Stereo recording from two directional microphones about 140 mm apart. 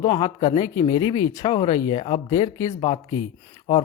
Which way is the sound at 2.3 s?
25° left (ahead or behind).